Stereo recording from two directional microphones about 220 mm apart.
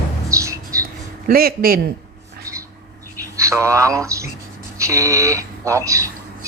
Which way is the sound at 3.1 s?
15° right (ahead or behind).